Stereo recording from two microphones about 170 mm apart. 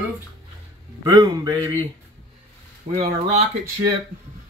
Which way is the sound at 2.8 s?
45° right (ahead or behind).